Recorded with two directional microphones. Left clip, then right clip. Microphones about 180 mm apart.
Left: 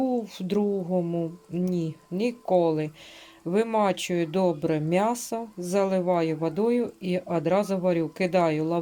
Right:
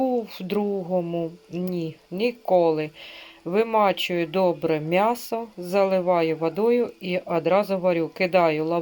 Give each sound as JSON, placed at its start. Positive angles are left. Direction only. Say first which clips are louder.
{"t": 0.0, "sound": "speech", "louder": "right 3 dB", "side_deg": 0}